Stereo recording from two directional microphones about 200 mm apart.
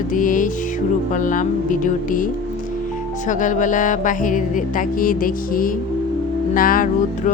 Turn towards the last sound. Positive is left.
turn(degrees=45)  # may be behind; listen again after turning